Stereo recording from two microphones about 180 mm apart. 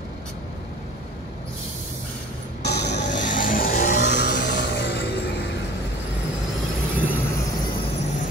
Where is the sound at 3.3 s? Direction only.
50° left (ahead or behind); by 5.1 s 70° left (ahead or behind).